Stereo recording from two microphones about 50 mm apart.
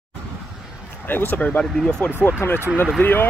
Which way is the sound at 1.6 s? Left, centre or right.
Left.